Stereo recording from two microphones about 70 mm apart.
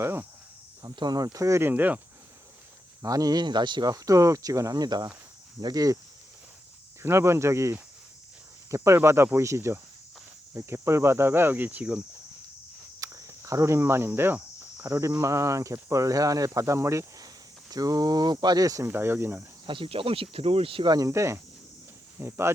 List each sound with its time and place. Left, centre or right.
0.0 s cricket: right
0.8 s speech: right
1.6 s speech: right
3.0 s speech: right
7.0 s speech: right
13.0 s speech: right
14.9 s speech: right
16.6 s speech: right
17.7 s speech: right
18.9 s speech: right
20.8 s speech: right
21.1 s speech: right